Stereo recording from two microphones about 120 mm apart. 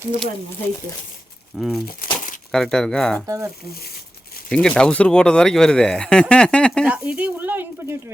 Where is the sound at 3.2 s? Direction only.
25° right (ahead or behind).